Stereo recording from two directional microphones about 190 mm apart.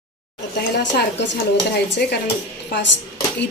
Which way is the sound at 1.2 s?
65° left (ahead or behind).